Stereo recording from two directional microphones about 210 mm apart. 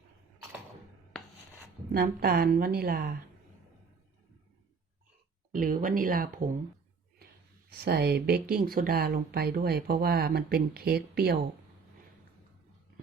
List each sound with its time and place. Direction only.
1.9 s speech: 45° right (ahead or behind)
5.5 s speech: 40° right (ahead or behind)
7.7 s speech: 50° right (ahead or behind)